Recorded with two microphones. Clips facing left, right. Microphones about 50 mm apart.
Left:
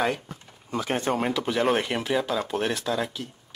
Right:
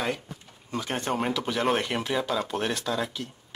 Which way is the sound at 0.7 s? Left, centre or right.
Centre.